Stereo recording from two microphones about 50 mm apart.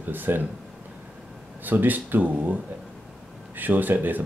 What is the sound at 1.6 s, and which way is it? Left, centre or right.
Speech, right.